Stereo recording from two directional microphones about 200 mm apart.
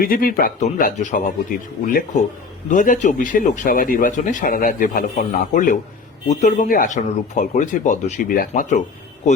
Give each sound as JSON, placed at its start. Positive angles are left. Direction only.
{"t": 0.0, "sound": "speech", "side_deg": 45}